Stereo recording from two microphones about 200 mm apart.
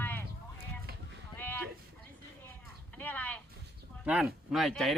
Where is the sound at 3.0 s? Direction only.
10° left (ahead or behind).